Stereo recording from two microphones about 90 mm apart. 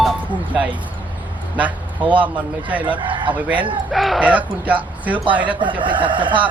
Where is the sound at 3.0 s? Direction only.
65° right (ahead or behind).